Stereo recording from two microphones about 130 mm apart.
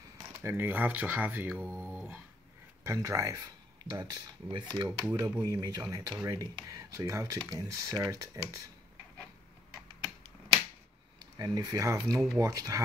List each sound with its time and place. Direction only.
0.4 s speech: 20° right (ahead or behind)
1.9 s dog: 15° right (ahead or behind)
2.8 s speech: 25° right (ahead or behind)
4.8 s speech: 15° right (ahead or behind)
5.4 s speech: 30° right (ahead or behind)
11.3 s speech: 30° right (ahead or behind)